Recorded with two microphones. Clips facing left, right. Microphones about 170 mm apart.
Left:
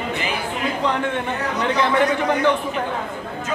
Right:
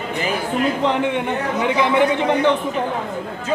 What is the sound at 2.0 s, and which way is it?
Speech, 25° right (ahead or behind).